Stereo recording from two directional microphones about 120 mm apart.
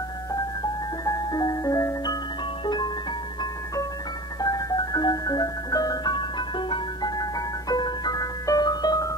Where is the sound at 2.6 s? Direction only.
35° left (ahead or behind).